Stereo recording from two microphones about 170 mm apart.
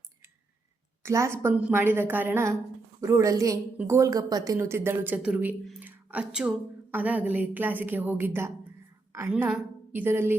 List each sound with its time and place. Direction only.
1.0 s a woman's voice: 15° right (ahead or behind)